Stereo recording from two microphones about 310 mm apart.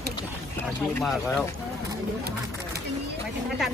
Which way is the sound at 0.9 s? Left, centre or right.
Centre.